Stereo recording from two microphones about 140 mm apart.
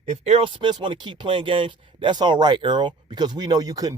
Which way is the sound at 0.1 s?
45° right (ahead or behind).